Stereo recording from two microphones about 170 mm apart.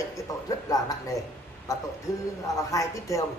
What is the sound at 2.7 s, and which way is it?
Speech, 20° left (ahead or behind).